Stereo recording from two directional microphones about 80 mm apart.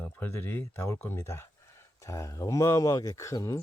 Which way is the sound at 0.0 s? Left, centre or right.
Left.